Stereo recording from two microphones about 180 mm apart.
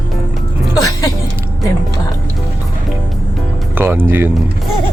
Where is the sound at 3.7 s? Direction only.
10° right (ahead or behind).